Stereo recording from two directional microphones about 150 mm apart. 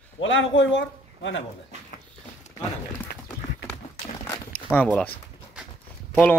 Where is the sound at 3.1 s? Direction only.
75° left (ahead or behind).